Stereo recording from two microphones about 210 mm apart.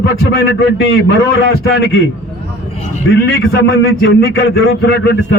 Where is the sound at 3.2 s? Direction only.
50° left (ahead or behind).